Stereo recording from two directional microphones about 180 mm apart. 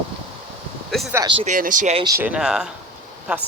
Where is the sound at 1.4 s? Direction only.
45° right (ahead or behind).